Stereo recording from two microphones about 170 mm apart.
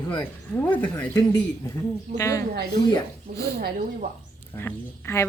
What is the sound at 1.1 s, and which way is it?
Speech, 20° left (ahead or behind).